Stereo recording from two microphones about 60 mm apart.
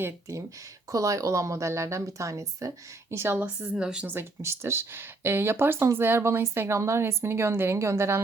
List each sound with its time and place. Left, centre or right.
0.9 s a woman's voice: right
3.8 s speech: centre
4.0 s speech: right